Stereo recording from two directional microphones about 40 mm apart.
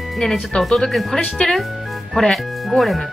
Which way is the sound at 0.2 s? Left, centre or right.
Centre.